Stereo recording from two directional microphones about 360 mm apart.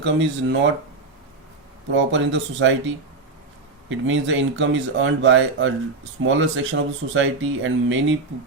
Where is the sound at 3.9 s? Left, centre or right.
Right.